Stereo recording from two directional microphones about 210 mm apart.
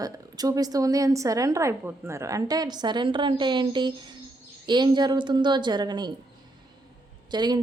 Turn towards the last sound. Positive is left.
turn(degrees=-20)  # may be behind; listen again after turning